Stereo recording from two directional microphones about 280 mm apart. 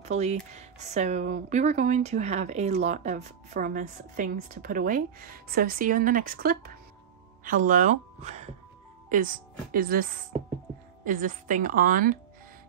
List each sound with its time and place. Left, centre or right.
0.0 s speech: right
11.1 s speech: right